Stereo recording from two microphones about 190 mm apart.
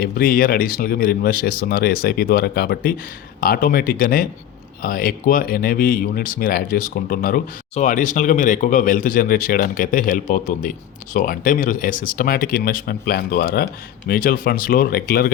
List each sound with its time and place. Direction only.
0.0 s speech: 50° left (ahead or behind)